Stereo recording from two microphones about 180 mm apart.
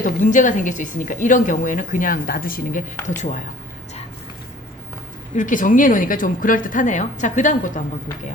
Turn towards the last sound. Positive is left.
turn(degrees=45)  # may be behind; listen again after turning